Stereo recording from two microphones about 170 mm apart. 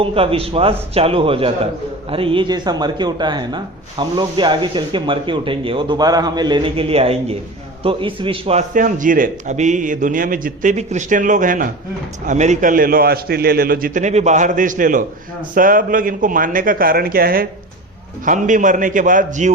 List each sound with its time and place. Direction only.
0.0 s a man's voice: 35° right (ahead or behind)
8.7 s a man's voice: 50° right (ahead or behind)
18.3 s a man's voice: 50° right (ahead or behind)